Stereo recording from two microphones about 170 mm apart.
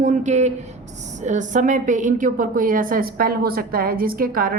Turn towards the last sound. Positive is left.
turn(degrees=-55)  # may be behind; listen again after turning